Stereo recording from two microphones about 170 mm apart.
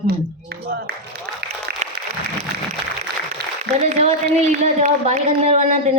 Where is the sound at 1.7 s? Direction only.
70° right (ahead or behind).